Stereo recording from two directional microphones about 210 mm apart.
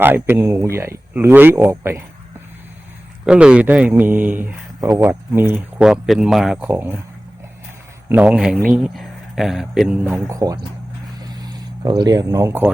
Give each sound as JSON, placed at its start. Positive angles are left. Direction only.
{"t": 0.0, "sound": "speech", "side_deg": -10}
{"t": 3.2, "sound": "speech", "side_deg": -5}
{"t": 8.1, "sound": "speech", "side_deg": -5}
{"t": 11.2, "sound": "a sound", "side_deg": -20}